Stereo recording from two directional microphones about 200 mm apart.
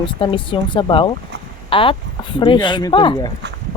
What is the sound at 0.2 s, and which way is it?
Speech, 25° left (ahead or behind).